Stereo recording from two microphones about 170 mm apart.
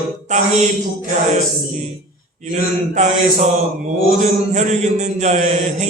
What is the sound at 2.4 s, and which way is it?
Mantra, 45° right (ahead or behind).